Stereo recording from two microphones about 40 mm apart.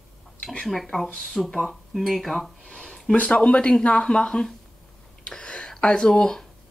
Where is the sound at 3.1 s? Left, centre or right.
Left.